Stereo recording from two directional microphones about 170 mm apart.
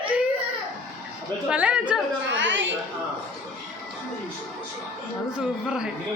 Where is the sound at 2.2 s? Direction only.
90° right.